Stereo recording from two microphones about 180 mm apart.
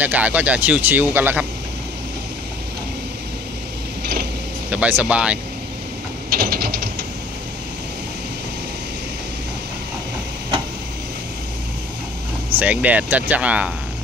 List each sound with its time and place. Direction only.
0.0 s speech: 10° right (ahead or behind)
4.0 s a sound: 60° right (ahead or behind)
4.6 s speech: 10° right (ahead or behind)
6.3 s ratchet: 55° right (ahead or behind)
12.5 s speech: 10° right (ahead or behind)